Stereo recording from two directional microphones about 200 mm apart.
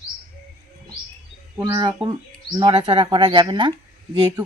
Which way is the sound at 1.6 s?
20° right (ahead or behind).